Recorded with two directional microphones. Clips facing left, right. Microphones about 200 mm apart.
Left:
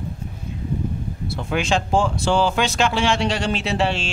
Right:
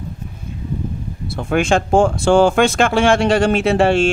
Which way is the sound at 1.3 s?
50° right (ahead or behind).